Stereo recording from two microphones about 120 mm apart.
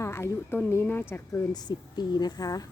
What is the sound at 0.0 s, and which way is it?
Speech, 20° left (ahead or behind).